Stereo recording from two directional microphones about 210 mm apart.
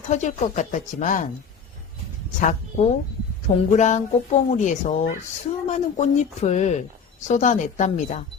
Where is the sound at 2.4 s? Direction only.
35° left (ahead or behind).